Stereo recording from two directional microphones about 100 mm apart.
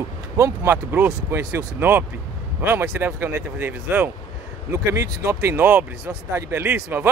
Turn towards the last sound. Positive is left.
turn(degrees=-20)  # may be behind; listen again after turning